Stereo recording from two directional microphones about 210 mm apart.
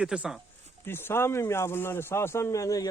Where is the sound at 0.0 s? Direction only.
5° right (ahead or behind).